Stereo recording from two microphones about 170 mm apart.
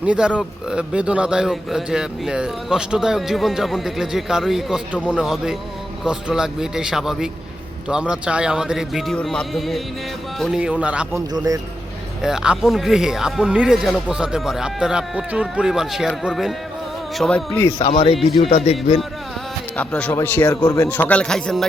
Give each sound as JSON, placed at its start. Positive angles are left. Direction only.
{"t": 0.0, "sound": "a man's voice", "side_deg": -5}
{"t": 11.3, "sound": "speech", "side_deg": -20}
{"t": 12.2, "sound": "a man's voice", "side_deg": -5}
{"t": 17.7, "sound": "speech", "side_deg": 35}
{"t": 19.7, "sound": "speech", "side_deg": 5}